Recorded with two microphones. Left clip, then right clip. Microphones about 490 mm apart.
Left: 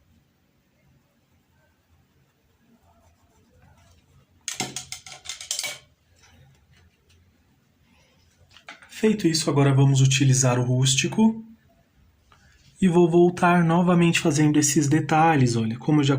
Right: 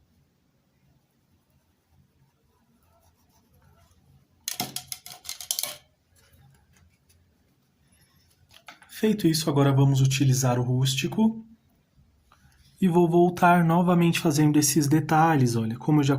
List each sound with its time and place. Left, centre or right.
4.5 s a sound: right
9.0 s speech: right
12.8 s speech: right